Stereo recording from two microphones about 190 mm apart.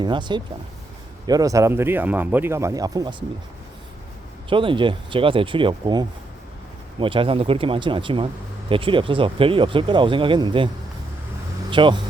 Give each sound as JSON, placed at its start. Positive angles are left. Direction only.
{"t": 0.0, "sound": "speech", "side_deg": -25}
{"t": 4.4, "sound": "speech", "side_deg": -25}
{"t": 11.7, "sound": "speech", "side_deg": -25}